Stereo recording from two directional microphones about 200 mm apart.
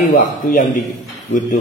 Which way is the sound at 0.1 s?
40° left (ahead or behind).